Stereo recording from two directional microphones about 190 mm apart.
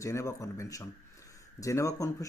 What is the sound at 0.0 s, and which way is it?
A man's voice, 15° left (ahead or behind).